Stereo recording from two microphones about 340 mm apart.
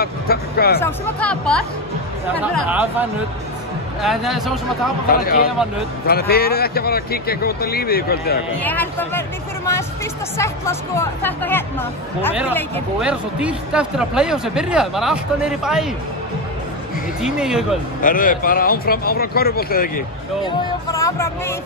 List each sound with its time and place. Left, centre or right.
0.0 s vehicle: left
0.7 s speech: centre
5.0 s speech: left
8.6 s speech: centre
10.3 s speech: centre
17.2 s speech: centre
18.0 s speech: left
20.4 s speech: centre